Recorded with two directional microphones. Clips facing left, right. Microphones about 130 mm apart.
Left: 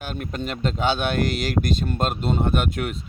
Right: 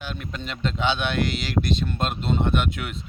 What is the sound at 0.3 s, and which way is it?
Speech, 45° left (ahead or behind).